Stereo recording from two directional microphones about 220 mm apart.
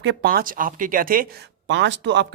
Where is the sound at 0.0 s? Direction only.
50° right (ahead or behind).